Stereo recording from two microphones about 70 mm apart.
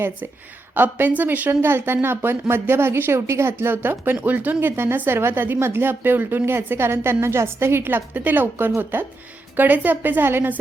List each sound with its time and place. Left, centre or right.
0.8 s a woman's voice: right